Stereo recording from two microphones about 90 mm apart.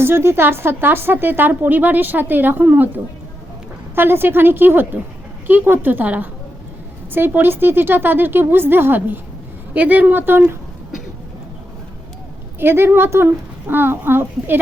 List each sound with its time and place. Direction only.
0.0 s a woman's voice: 30° right (ahead or behind)
12.5 s a woman's voice: 25° right (ahead or behind)